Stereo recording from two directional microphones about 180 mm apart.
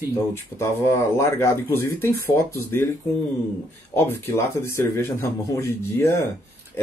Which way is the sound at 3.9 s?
15° left (ahead or behind).